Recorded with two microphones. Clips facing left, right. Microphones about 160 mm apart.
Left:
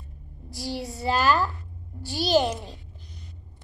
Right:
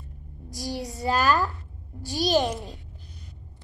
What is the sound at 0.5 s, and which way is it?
Child singing, 40° right (ahead or behind).